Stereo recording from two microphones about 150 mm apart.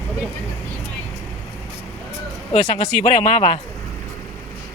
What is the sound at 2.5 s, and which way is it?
Speech, 45° left (ahead or behind).